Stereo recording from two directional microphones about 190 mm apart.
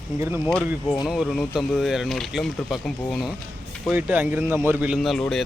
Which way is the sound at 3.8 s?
10° right (ahead or behind).